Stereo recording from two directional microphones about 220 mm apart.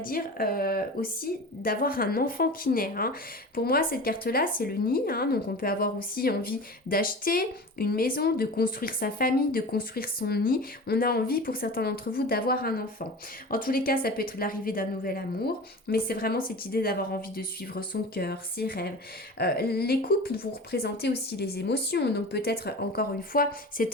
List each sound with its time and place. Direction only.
0.0 s speech: 40° left (ahead or behind)